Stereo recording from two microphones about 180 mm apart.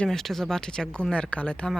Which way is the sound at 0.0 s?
Centre (ahead or behind).